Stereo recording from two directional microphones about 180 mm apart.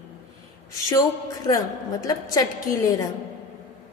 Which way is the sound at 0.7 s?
20° left (ahead or behind).